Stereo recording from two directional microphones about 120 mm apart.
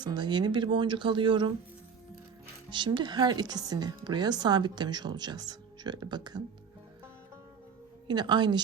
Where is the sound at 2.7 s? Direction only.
40° right (ahead or behind).